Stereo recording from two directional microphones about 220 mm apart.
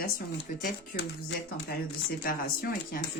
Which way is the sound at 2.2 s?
40° left (ahead or behind).